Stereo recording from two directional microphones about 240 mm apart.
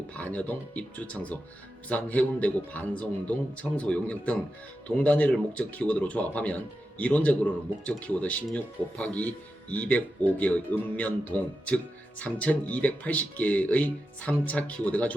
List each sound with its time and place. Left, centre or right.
0.1 s a man's voice: centre